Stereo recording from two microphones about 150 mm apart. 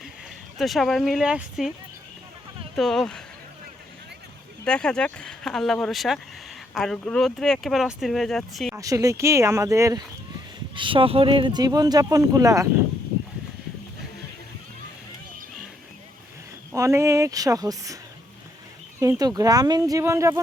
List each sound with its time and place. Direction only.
0.6 s speech: centre (ahead or behind)
2.7 s speech: centre (ahead or behind)
4.6 s speech: 5° left (ahead or behind)
8.7 s speech: 20° right (ahead or behind)
10.8 s speech: 35° right (ahead or behind)
16.7 s speech: 20° right (ahead or behind)
19.2 s speech: 25° right (ahead or behind)